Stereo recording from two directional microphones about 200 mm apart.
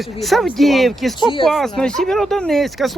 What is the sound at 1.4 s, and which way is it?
Speech, centre (ahead or behind).